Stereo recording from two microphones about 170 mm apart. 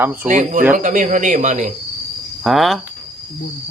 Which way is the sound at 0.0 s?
10° right (ahead or behind).